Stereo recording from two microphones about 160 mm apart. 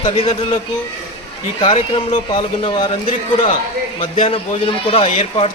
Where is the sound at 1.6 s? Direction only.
35° left (ahead or behind).